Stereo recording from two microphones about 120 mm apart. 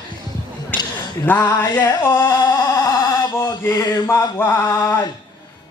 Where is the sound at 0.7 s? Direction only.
15° left (ahead or behind).